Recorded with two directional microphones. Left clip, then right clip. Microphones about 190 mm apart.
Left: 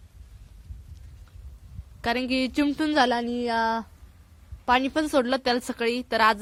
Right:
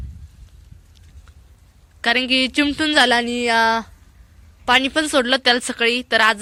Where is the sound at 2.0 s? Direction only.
Centre (ahead or behind).